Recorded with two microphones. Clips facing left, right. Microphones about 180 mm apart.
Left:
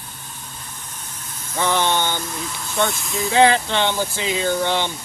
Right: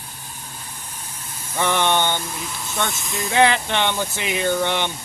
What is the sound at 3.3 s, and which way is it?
Speech, 20° right (ahead or behind).